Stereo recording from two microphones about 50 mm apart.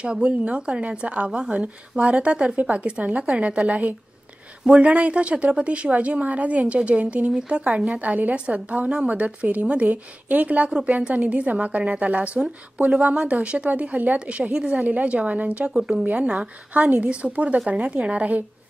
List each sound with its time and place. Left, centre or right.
0.0 s a woman's voice: centre
1.3 s speech: centre
2.0 s a woman's voice: right
12.7 s speech: centre
13.3 s a woman's voice: right
14.9 s a woman's voice: right